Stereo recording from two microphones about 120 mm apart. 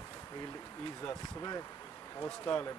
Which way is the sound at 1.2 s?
30° left (ahead or behind).